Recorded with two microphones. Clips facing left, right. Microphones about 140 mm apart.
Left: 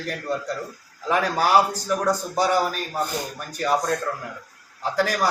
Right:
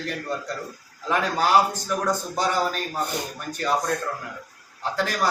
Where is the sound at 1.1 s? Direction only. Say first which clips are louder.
Left 1 dB; 10° left (ahead or behind).